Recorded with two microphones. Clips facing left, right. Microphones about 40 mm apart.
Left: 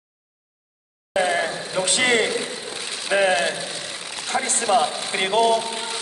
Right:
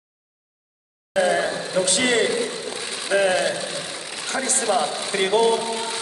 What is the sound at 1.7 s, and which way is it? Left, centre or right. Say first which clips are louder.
Speech: left 1 dB; left.